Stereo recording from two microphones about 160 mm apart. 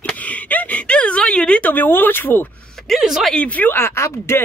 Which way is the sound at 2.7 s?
Centre (ahead or behind).